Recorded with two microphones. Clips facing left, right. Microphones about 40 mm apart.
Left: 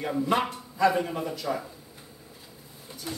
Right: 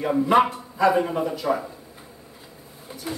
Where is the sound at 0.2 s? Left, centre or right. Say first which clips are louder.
Right 8 dB; centre.